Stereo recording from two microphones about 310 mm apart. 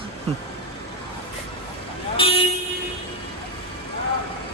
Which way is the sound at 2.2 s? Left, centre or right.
Centre.